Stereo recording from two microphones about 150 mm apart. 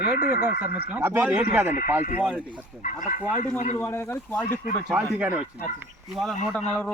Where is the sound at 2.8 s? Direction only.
60° left (ahead or behind).